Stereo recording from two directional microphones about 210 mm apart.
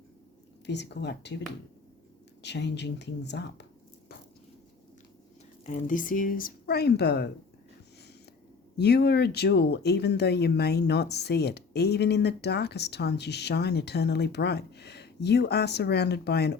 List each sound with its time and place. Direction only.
0.6 s speech: 55° left (ahead or behind)
2.4 s speech: 55° left (ahead or behind)
5.6 s speech: 35° left (ahead or behind)
8.8 s speech: 50° left (ahead or behind)